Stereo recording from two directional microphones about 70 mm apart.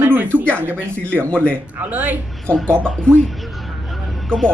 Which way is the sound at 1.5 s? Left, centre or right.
Right.